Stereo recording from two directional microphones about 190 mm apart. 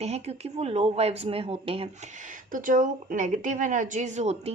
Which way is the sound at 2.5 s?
45° right (ahead or behind).